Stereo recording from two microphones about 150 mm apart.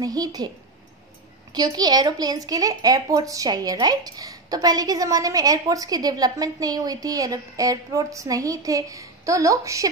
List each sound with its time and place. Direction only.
0.0 s a woman's voice: 25° right (ahead or behind)
1.5 s a woman's voice: 25° right (ahead or behind)